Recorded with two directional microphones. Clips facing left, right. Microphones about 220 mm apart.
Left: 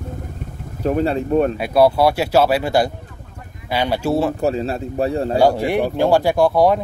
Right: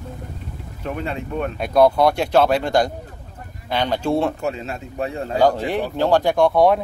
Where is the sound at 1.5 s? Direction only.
5° left (ahead or behind).